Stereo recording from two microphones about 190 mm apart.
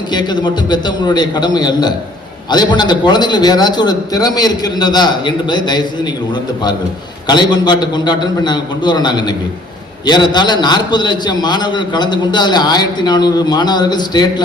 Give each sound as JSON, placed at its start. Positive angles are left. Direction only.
{"t": 0.1, "sound": "a man's voice", "side_deg": 25}